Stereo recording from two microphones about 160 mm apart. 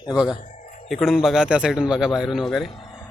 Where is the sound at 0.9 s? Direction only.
Centre (ahead or behind).